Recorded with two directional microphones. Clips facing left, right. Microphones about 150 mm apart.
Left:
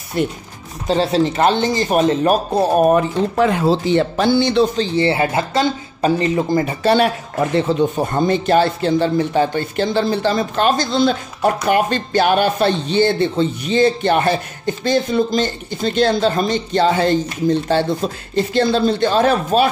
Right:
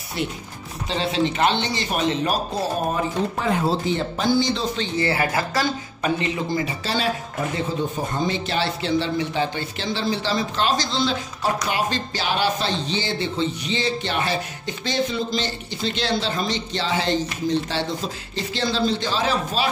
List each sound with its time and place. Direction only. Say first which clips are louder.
0.2 s speech: left 8 dB; 50° left (ahead or behind); by 4.6 s 65° left (ahead or behind)
4.7 s speech: left 6 dB; 30° left (ahead or behind); by 19.7 s 55° left (ahead or behind)